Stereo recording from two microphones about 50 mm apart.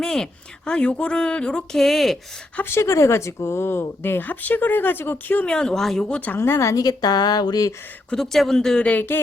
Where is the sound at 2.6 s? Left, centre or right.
Left.